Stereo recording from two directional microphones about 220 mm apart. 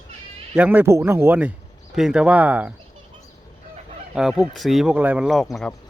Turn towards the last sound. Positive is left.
turn(degrees=0)  # may be behind; listen again after turning